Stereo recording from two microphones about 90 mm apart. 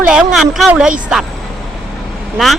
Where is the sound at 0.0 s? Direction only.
10° right (ahead or behind).